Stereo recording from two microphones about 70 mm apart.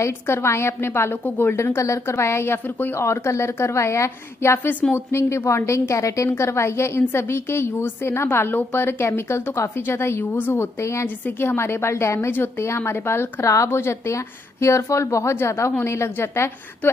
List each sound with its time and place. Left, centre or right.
0.0 s a woman's voice: left
3.0 s a woman's voice: left
11.1 s a woman's voice: left